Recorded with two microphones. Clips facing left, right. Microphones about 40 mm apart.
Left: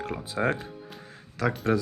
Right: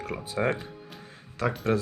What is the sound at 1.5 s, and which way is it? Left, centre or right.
Speech, centre.